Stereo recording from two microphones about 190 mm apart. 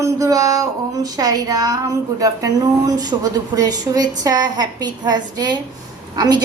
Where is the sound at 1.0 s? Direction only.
20° right (ahead or behind).